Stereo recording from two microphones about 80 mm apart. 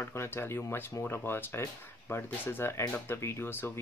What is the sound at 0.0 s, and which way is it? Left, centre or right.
Speech, left.